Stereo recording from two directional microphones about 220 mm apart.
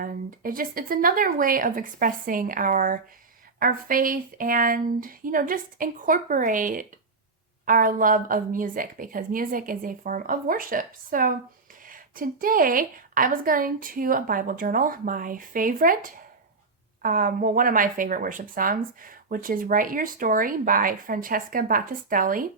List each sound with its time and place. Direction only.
0.0 s speech: 40° right (ahead or behind)
17.0 s speech: 40° right (ahead or behind)